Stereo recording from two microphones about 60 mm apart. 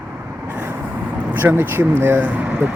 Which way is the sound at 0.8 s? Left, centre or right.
Right.